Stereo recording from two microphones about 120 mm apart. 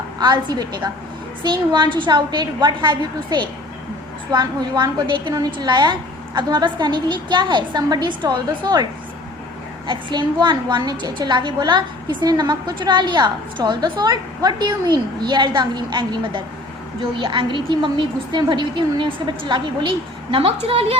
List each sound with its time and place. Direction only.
0.2 s a woman's voice: 35° right (ahead or behind); by 21.0 s 55° right (ahead or behind)